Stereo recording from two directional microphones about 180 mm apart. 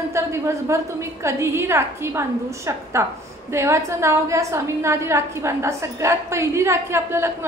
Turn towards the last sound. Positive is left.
turn(degrees=-15)  # may be behind; listen again after turning